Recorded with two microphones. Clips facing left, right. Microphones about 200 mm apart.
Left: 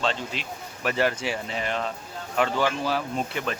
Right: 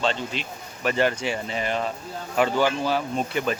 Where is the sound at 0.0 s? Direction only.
Centre (ahead or behind).